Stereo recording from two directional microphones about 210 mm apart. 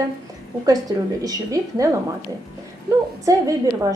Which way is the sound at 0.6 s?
15° right (ahead or behind).